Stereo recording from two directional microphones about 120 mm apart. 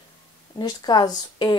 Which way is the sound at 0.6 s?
35° left (ahead or behind).